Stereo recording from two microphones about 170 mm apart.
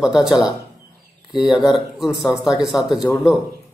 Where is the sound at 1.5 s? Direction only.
Centre (ahead or behind).